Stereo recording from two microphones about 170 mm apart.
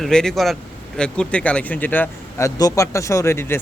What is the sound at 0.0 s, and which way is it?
A man's voice, 5° left (ahead or behind).